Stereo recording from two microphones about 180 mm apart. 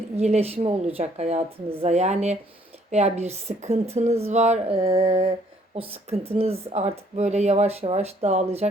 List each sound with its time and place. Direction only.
0.2 s a woman's voice: 35° right (ahead or behind)